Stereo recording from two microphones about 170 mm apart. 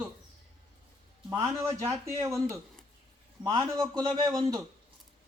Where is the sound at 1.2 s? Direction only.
20° right (ahead or behind).